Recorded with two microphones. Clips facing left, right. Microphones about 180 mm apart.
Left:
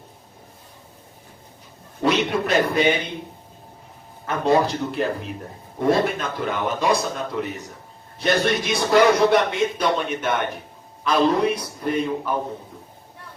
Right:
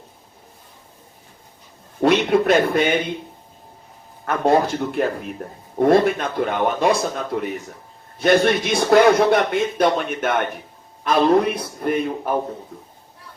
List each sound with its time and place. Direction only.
2.0 s a man's voice: 55° right (ahead or behind)
4.3 s a man's voice: 55° right (ahead or behind)